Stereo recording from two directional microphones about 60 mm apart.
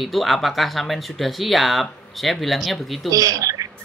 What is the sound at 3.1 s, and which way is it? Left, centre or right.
Speech, right.